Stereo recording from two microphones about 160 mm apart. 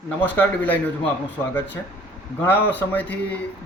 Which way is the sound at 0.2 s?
10° left (ahead or behind).